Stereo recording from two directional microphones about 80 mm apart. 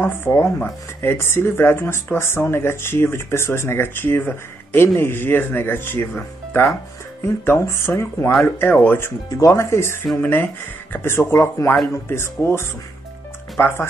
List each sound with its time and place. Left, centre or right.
0.0 s speech: left
7.5 s speech: left
9.3 s speech: left
10.2 s speech: left